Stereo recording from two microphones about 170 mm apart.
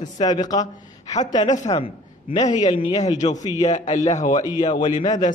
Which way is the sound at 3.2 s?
40° left (ahead or behind).